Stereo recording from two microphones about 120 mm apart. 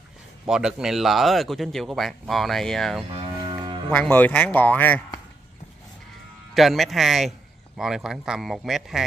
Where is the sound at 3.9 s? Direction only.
15° left (ahead or behind).